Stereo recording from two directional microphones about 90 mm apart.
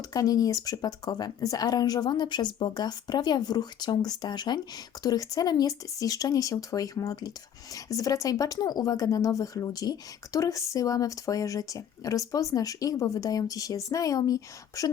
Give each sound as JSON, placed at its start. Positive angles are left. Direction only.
{"t": 0.1, "sound": "speech", "side_deg": 40}